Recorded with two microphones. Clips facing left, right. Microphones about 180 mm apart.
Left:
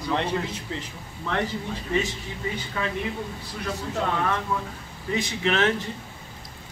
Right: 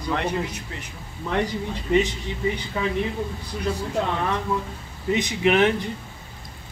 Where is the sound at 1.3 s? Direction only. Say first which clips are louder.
Right 3 dB; 15° right (ahead or behind).